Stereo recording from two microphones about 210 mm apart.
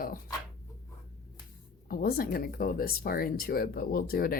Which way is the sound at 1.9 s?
45° left (ahead or behind).